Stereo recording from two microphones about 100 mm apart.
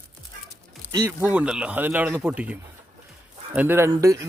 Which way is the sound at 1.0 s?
20° right (ahead or behind).